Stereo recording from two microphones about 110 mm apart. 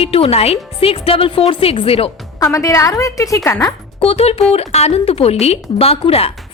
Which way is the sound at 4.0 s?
60° left (ahead or behind).